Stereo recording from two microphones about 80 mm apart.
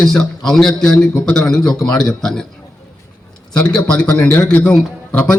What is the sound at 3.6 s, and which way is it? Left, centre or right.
Speech, centre.